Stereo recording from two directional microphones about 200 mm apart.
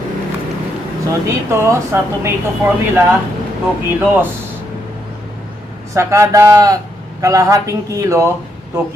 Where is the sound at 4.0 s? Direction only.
10° right (ahead or behind).